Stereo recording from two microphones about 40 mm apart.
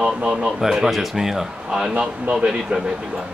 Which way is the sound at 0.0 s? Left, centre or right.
Right.